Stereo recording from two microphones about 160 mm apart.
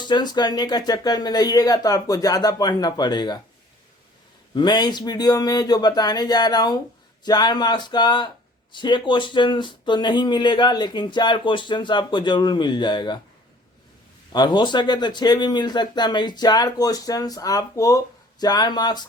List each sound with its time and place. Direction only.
0.0 s speech: 25° left (ahead or behind)
4.5 s speech: 25° left (ahead or behind)
14.3 s speech: 30° left (ahead or behind)